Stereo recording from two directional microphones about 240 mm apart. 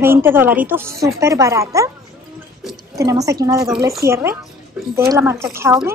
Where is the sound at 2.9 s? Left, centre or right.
Centre.